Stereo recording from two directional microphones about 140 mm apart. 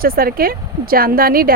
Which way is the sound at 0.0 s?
90° right.